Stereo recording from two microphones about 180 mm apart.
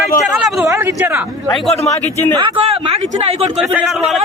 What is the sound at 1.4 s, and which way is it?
Speech, centre (ahead or behind).